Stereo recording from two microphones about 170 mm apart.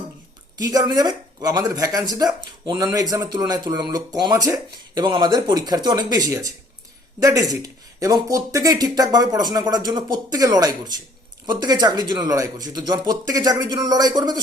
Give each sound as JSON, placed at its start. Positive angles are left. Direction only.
{"t": 0.6, "sound": "speech", "side_deg": -20}